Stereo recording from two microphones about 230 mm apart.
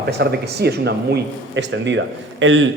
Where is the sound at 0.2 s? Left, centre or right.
Right.